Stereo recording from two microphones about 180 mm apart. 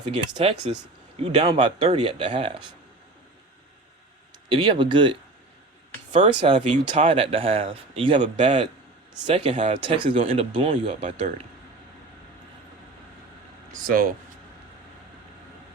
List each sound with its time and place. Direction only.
0.4 s speech: 30° right (ahead or behind)
4.5 s speech: 30° right (ahead or behind)
6.1 s speech: 40° right (ahead or behind)
9.8 s speech: 25° right (ahead or behind)
13.7 s speech: 55° right (ahead or behind)